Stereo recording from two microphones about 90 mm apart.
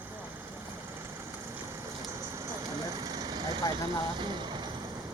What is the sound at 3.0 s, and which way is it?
Vehicle, 45° right (ahead or behind).